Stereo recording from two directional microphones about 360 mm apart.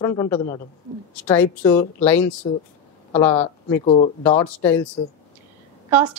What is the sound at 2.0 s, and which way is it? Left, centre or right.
Speech, centre.